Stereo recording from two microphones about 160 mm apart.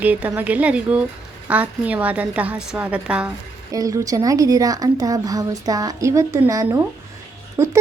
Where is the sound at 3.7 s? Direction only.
20° right (ahead or behind).